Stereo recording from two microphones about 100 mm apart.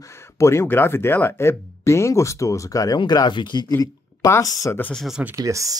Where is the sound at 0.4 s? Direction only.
25° left (ahead or behind).